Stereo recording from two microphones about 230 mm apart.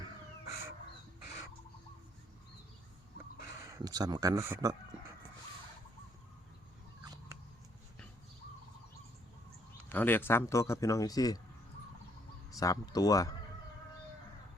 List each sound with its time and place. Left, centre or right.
0.0 s a sound: centre
3.6 s speech: centre
9.9 s speech: centre
12.5 s speech: centre